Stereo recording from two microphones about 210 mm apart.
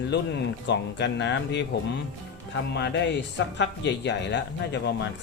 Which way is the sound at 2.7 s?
55° left (ahead or behind).